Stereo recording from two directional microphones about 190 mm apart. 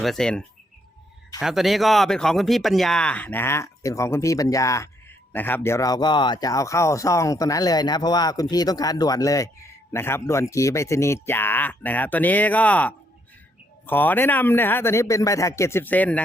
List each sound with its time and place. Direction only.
0.0 s speech: centre (ahead or behind)